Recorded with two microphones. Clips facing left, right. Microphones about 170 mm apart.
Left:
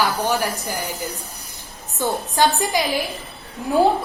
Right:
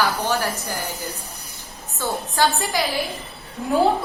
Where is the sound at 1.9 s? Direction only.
15° left (ahead or behind).